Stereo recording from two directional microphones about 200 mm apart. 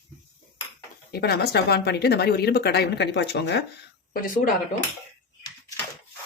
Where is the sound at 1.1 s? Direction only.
50° left (ahead or behind).